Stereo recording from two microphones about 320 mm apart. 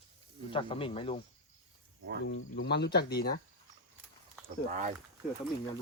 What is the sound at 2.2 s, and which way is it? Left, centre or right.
Speech, left.